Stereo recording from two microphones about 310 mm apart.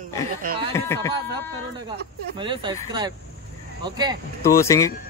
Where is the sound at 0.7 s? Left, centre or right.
Centre.